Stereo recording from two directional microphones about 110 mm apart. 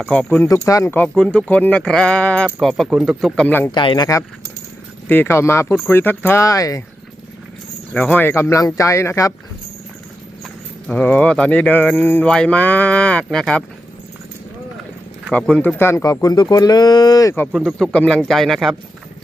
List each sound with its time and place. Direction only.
0.1 s speech: 10° left (ahead or behind)
0.4 s speech: 30° left (ahead or behind)
1.1 s speech: 5° left (ahead or behind)
3.4 s speech: 15° left (ahead or behind)
3.7 s speech: 45° left (ahead or behind)
5.0 s speech: 20° left (ahead or behind)
7.9 s speech: 15° left (ahead or behind)
10.4 s speech: 10° left (ahead or behind)
15.3 s speech: 10° left (ahead or behind)
15.6 s speech: 20° left (ahead or behind)
16.2 s speech: 35° left (ahead or behind)
17.5 s a man's voice: centre (ahead or behind)